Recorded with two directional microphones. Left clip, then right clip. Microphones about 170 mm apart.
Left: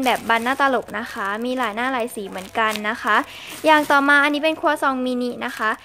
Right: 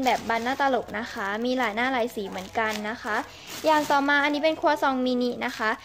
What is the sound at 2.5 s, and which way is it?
Speech, 25° left (ahead or behind).